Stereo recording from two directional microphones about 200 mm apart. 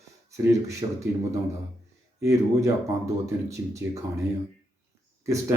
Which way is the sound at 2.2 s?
15° right (ahead or behind).